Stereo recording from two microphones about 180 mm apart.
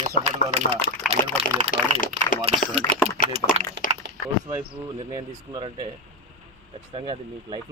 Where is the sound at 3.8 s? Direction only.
70° right (ahead or behind).